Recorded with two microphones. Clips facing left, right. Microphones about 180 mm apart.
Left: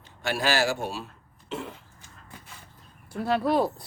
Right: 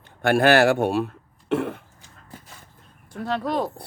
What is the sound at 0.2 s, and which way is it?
Speech, 55° right (ahead or behind).